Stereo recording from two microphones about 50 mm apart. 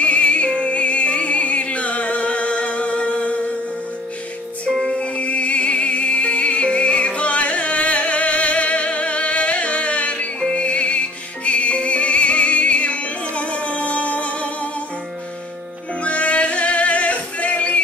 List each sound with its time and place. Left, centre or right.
0.0 s music: left
4.6 s music: centre
16.0 s music: left